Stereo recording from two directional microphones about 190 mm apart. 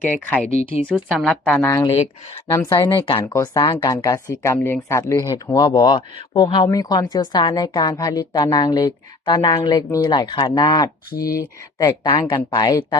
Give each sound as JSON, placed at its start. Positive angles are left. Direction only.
{"t": 0.1, "sound": "a woman's voice", "side_deg": 10}
{"t": 1.8, "sound": "speech", "side_deg": 30}
{"t": 2.5, "sound": "a woman's voice", "side_deg": 15}